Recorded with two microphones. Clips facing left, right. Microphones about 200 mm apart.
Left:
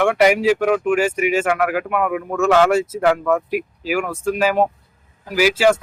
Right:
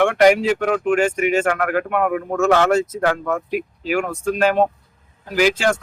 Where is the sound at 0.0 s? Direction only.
5° left (ahead or behind).